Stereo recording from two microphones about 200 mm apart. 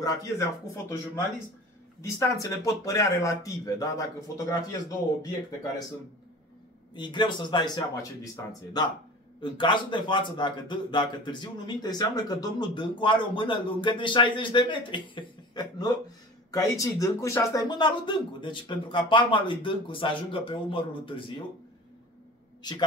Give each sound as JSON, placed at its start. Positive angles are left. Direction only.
{"t": 0.0, "sound": "speech", "side_deg": 15}
{"t": 2.0, "sound": "speech", "side_deg": 15}
{"t": 7.0, "sound": "a man's voice", "side_deg": 20}
{"t": 22.6, "sound": "a man's voice", "side_deg": 20}